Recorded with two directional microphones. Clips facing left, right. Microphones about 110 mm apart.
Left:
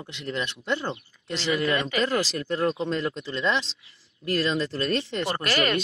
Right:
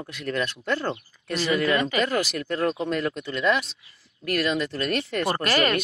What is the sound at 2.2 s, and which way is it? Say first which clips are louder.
Speech: even; 30° left (ahead or behind).